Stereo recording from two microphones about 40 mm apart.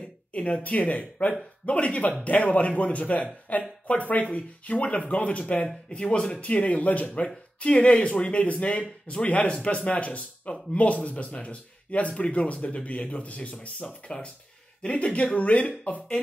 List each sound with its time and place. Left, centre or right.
0.3 s speech: left
7.6 s speech: left
8.1 s speech: left